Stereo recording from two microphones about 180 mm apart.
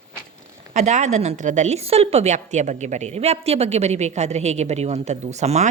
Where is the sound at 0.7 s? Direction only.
40° right (ahead or behind).